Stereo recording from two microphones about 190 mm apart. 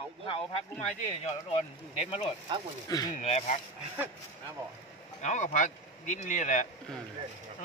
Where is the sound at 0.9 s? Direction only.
35° left (ahead or behind); by 3.2 s 20° left (ahead or behind).